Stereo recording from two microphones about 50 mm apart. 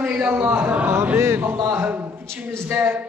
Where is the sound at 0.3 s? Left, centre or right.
Right.